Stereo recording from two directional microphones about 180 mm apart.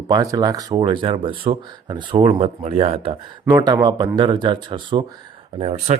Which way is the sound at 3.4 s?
25° right (ahead or behind).